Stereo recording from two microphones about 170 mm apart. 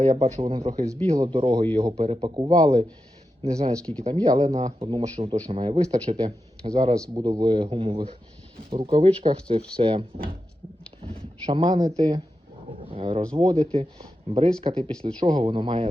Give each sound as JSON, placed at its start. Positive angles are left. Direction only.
{"t": 0.0, "sound": "speech", "side_deg": -40}
{"t": 0.4, "sound": "speech", "side_deg": -30}
{"t": 4.4, "sound": "speech", "side_deg": -40}
{"t": 6.7, "sound": "speech", "side_deg": -20}
{"t": 11.4, "sound": "speech", "side_deg": -30}
{"t": 12.9, "sound": "speech", "side_deg": -35}